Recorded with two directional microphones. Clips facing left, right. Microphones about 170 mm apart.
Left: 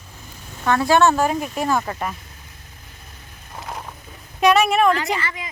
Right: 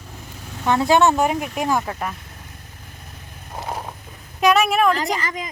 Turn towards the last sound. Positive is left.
turn(degrees=-40)  # may be behind; listen again after turning